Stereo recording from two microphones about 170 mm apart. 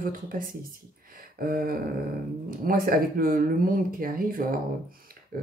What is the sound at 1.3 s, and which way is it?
Speech, 60° right (ahead or behind).